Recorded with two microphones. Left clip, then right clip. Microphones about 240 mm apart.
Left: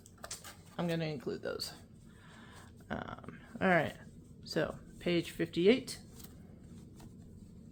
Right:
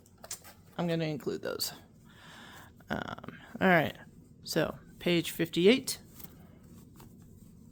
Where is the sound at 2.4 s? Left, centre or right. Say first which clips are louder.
Right 5 dB; right.